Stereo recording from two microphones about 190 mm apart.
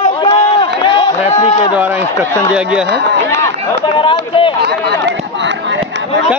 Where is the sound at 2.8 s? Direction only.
60° right (ahead or behind).